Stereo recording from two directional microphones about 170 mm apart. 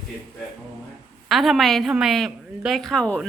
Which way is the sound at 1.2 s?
Centre (ahead or behind).